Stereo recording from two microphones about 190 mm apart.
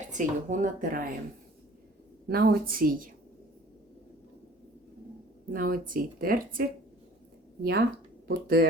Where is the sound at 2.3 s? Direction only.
55° right (ahead or behind).